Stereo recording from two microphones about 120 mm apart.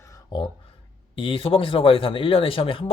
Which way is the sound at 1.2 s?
50° left (ahead or behind).